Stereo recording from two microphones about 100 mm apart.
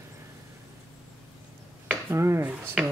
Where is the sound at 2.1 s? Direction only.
30° right (ahead or behind).